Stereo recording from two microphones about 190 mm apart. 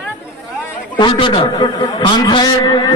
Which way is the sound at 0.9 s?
25° left (ahead or behind).